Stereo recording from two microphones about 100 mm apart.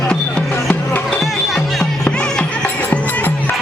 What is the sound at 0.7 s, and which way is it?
Music, 10° left (ahead or behind).